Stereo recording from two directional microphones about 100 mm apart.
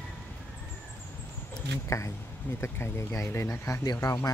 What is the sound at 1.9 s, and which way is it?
Speech, 30° left (ahead or behind).